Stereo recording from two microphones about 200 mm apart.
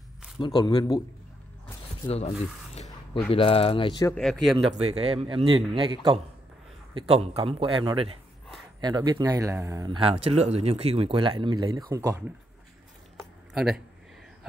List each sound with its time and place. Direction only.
0.4 s speech: 20° left (ahead or behind)
2.0 s speech: 30° left (ahead or behind)
4.2 s speech: centre (ahead or behind)
4.7 s speech: 30° right (ahead or behind)
9.9 s speech: 30° right (ahead or behind)
13.2 s a sound: centre (ahead or behind)